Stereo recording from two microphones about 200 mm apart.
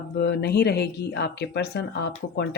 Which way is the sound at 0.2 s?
55° left (ahead or behind).